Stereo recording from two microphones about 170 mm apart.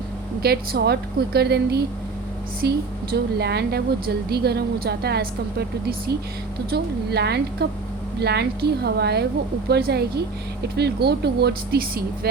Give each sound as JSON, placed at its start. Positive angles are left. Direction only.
{"t": 0.4, "sound": "a woman's voice", "side_deg": -70}